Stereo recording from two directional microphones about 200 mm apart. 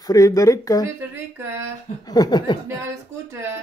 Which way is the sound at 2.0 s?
20° left (ahead or behind).